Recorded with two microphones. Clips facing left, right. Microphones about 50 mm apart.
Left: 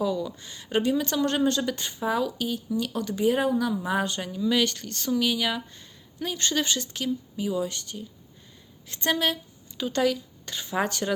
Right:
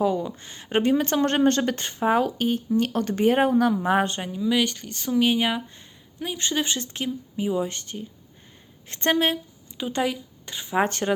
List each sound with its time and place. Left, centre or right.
0.0 s speech: right
4.2 s speech: centre
5.2 s speech: right
9.7 s speech: right
10.8 s speech: right